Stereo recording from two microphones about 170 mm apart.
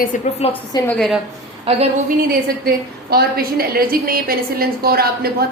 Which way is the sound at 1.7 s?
35° right (ahead or behind).